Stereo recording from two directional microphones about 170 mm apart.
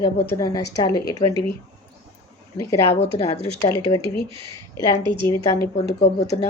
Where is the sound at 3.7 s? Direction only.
15° left (ahead or behind).